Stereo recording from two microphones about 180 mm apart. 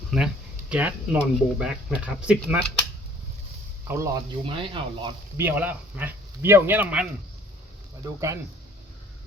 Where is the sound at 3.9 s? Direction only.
10° right (ahead or behind).